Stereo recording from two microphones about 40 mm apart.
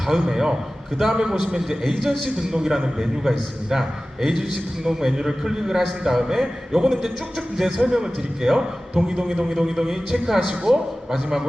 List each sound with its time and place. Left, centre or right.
0.1 s a man's voice: centre